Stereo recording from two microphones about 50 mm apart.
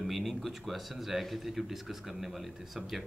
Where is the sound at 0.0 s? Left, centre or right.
Centre.